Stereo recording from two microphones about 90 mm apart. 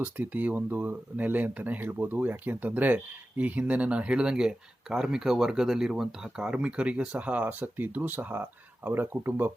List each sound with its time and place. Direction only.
0.0 s speech: 20° right (ahead or behind)